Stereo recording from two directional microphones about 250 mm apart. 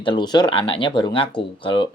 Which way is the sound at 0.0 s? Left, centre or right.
Centre.